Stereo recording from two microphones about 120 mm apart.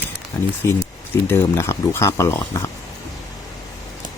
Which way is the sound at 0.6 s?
20° left (ahead or behind).